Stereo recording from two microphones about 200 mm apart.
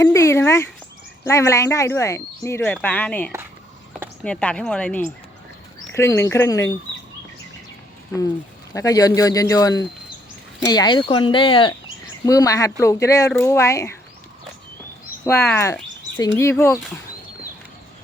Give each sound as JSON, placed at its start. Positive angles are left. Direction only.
{"t": 0.0, "sound": "a sound", "side_deg": 15}
{"t": 1.2, "sound": "speech", "side_deg": 15}
{"t": 8.7, "sound": "speech", "side_deg": 15}
{"t": 15.2, "sound": "speech", "side_deg": 15}